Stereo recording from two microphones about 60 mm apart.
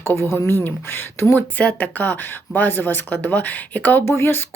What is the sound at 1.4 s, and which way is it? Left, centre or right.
Speech, left.